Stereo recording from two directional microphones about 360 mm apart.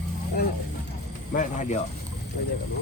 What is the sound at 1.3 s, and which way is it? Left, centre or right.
Speech, left.